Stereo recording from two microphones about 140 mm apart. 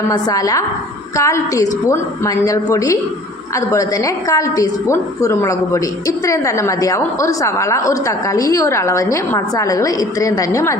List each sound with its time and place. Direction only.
0.1 s a woman's voice: 25° left (ahead or behind)